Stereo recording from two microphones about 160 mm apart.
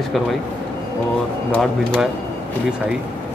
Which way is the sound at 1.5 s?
5° left (ahead or behind).